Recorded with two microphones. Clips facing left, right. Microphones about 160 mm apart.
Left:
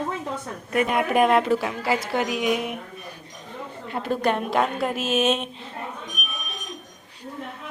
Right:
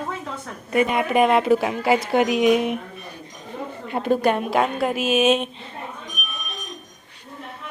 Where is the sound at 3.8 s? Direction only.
15° right (ahead or behind).